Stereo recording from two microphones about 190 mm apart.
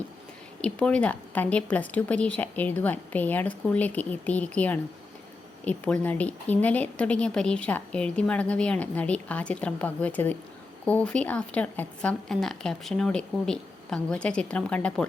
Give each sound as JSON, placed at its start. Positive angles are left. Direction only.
{"t": 0.6, "sound": "a woman's voice", "side_deg": 5}